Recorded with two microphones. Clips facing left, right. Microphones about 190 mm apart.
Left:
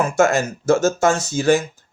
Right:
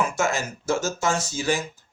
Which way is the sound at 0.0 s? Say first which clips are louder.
Left 8 dB; 55° left (ahead or behind).